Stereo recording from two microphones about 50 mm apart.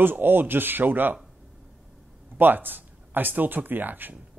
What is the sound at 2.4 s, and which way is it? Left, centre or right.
Speech, right.